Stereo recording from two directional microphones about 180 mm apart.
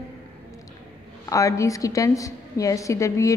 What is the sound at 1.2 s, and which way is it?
A woman's voice, 20° left (ahead or behind).